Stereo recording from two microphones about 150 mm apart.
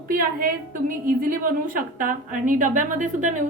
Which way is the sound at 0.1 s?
70° right (ahead or behind).